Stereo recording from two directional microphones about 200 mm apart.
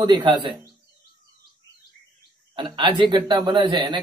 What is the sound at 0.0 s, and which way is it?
Speech, 20° right (ahead or behind).